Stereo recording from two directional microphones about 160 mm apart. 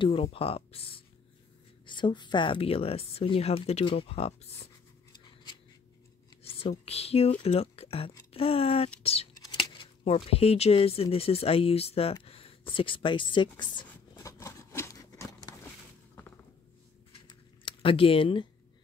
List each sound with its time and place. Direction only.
0.0 s speech: 35° left (ahead or behind)
6.4 s speech: 40° left (ahead or behind)
9.3 s speech: 25° left (ahead or behind)
14.1 s a sound: 20° left (ahead or behind)
17.1 s typing: 30° left (ahead or behind)